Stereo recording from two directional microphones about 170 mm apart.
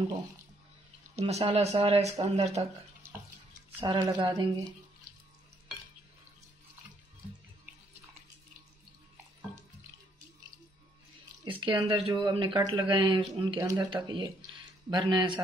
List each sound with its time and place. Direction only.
1.2 s speech: 35° right (ahead or behind)
3.0 s water tap: 15° right (ahead or behind)
3.8 s speech: 25° right (ahead or behind)
11.4 s speech: 30° right (ahead or behind)